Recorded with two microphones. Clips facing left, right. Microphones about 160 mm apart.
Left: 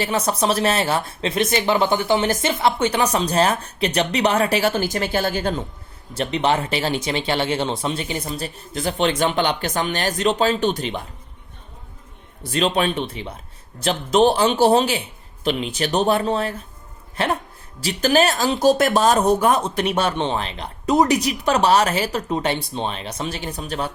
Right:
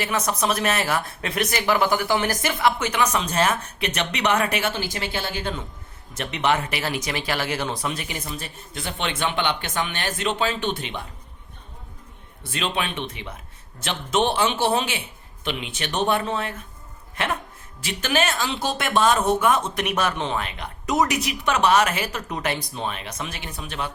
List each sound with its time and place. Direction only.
0.0 s speech: 30° left (ahead or behind)
12.4 s speech: 40° left (ahead or behind)